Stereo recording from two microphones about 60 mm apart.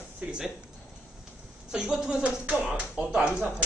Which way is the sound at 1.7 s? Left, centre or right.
Centre.